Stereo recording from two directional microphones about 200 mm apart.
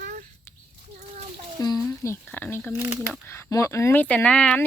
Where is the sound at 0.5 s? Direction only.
15° left (ahead or behind).